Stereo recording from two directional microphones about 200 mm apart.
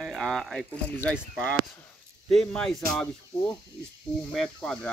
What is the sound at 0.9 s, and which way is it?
Speech, 10° left (ahead or behind).